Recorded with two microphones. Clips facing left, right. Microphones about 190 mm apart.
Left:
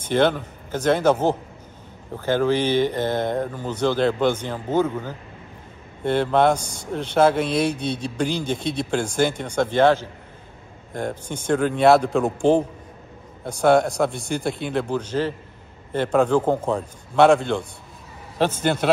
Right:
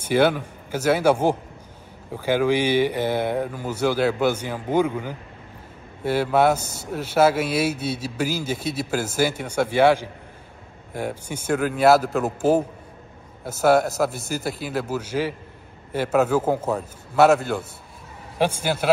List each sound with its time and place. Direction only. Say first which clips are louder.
0.0 s speech: even; 10° right (ahead or behind)